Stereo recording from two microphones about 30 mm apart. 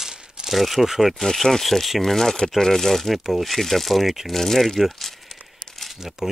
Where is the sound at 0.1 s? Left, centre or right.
Right.